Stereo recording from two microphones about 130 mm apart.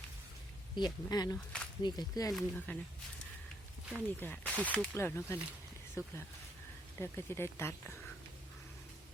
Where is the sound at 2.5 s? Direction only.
10° left (ahead or behind).